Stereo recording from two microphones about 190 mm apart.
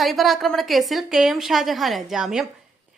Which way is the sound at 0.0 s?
Centre (ahead or behind).